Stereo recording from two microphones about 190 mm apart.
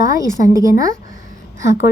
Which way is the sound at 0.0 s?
15° right (ahead or behind).